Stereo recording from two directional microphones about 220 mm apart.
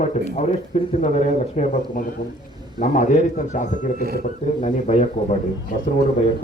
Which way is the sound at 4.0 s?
45° right (ahead or behind).